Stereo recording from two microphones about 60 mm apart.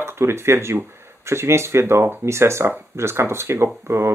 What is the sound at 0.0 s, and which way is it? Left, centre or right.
Speech, right.